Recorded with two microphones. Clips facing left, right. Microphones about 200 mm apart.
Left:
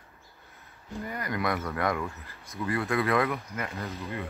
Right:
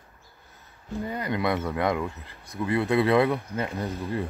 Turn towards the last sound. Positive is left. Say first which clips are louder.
# right 5 dB
turn(degrees=-15)  # may be behind; listen again after turning